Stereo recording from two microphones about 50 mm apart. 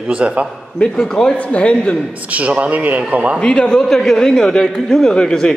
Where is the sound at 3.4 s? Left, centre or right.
Centre.